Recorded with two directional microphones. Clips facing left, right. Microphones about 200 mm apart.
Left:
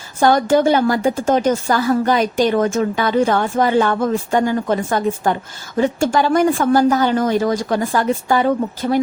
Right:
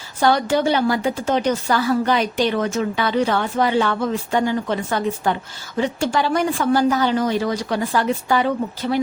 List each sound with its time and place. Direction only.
0.2 s a woman's voice: 45° left (ahead or behind)